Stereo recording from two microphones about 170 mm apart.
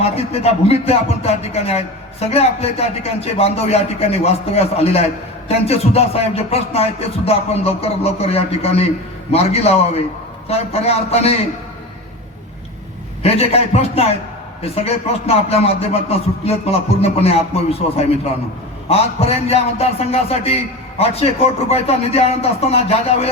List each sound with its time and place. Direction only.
0.0 s speech: 35° left (ahead or behind)
13.2 s speech: 35° left (ahead or behind)